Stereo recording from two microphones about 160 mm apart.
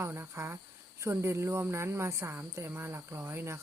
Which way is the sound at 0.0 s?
15° right (ahead or behind).